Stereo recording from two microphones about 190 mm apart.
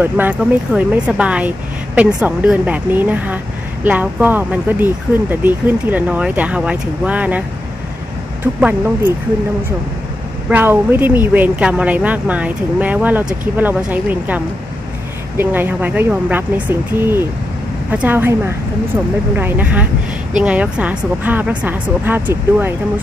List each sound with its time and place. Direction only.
0.0 s speech: 10° right (ahead or behind)
8.5 s speech: 5° right (ahead or behind)
10.5 s speech: 10° right (ahead or behind)